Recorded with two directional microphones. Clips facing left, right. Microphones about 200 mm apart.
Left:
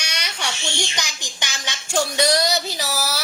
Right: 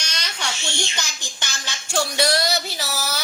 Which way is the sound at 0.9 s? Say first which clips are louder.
Left 2 dB; 15° left (ahead or behind).